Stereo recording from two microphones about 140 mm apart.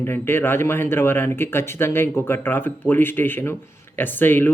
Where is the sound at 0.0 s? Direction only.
15° left (ahead or behind).